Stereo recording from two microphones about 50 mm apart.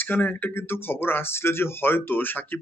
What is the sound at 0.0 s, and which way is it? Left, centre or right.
Speech, left.